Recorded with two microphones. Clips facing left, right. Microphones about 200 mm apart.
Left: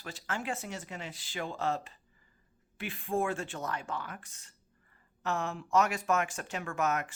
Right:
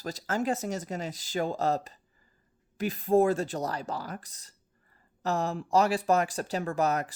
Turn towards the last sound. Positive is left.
turn(degrees=-35)  # may be behind; listen again after turning